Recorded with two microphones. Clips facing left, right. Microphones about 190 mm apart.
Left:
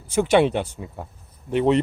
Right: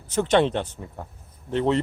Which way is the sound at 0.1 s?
10° left (ahead or behind).